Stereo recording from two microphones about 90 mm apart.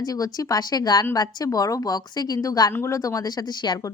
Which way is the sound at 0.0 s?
45° left (ahead or behind).